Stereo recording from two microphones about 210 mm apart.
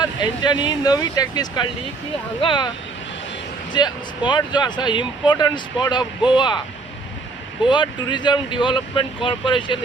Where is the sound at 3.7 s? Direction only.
20° left (ahead or behind).